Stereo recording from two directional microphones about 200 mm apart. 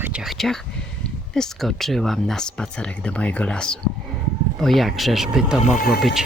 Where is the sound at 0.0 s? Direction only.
5° right (ahead or behind).